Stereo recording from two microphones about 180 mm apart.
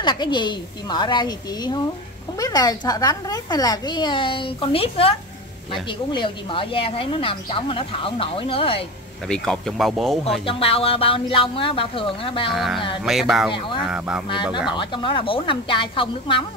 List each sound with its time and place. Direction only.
0.0 s speech: 25° left (ahead or behind)
9.3 s speech: centre (ahead or behind)
10.4 s speech: 30° left (ahead or behind)
12.4 s speech: centre (ahead or behind)
13.5 s speech: 25° left (ahead or behind)
13.7 s speech: 5° right (ahead or behind)
14.8 s speech: 25° left (ahead or behind)